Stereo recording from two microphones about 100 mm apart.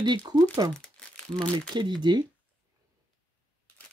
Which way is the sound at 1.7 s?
50° right (ahead or behind).